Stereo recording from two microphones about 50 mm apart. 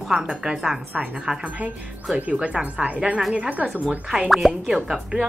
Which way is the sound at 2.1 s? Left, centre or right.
Right.